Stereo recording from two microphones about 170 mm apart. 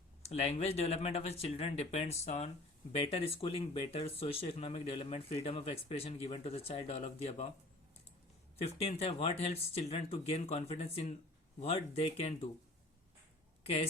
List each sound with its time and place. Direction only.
0.2 s speech: 40° left (ahead or behind)
8.6 s speech: 35° left (ahead or behind)